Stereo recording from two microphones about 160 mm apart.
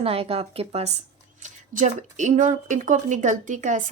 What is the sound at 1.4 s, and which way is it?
Speech, 50° right (ahead or behind).